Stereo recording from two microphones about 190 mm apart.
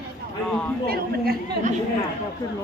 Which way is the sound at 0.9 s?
55° right (ahead or behind).